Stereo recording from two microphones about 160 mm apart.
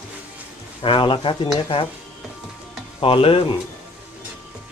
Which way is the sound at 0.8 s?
30° left (ahead or behind).